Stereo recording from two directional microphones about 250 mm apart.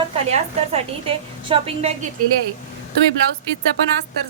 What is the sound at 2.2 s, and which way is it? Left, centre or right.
Speech, right.